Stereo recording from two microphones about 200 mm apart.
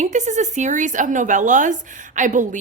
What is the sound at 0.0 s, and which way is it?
A woman's voice, 35° right (ahead or behind).